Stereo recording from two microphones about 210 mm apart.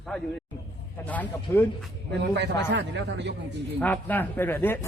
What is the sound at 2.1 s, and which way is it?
A man's voice, 55° right (ahead or behind).